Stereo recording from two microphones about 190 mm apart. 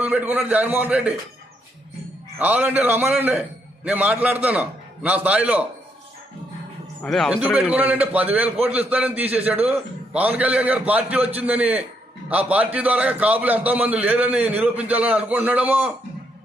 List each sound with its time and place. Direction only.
0.0 s a man's voice: 10° right (ahead or behind)
2.4 s a man's voice: 10° right (ahead or behind)
7.0 s a man's voice: centre (ahead or behind)